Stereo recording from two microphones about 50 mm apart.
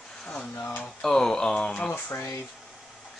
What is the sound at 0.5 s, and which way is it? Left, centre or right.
Speech, left.